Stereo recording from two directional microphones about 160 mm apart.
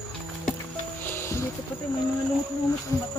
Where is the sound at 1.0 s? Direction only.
15° left (ahead or behind).